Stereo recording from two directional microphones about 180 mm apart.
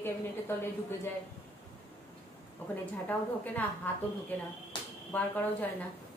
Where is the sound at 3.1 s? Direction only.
10° left (ahead or behind).